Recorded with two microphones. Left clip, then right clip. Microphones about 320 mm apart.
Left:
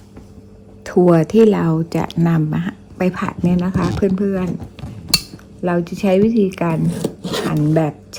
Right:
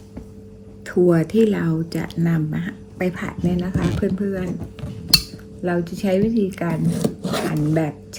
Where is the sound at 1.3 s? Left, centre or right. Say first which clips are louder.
Left 6 dB; centre.